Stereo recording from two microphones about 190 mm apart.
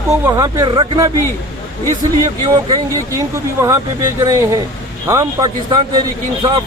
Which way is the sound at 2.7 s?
15° right (ahead or behind).